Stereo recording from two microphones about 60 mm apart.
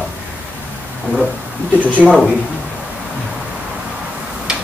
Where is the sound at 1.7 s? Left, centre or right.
Right.